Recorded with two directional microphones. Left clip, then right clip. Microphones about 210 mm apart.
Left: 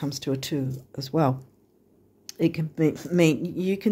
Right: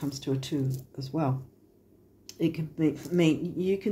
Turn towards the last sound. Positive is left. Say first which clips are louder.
# left 2 dB
turn(degrees=55)  # may be behind; listen again after turning